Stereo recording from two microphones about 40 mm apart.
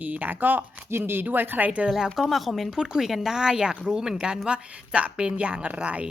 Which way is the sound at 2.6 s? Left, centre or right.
Centre.